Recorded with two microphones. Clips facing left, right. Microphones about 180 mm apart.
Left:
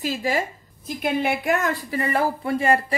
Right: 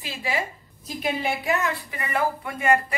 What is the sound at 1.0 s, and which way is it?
A woman's voice, 55° left (ahead or behind).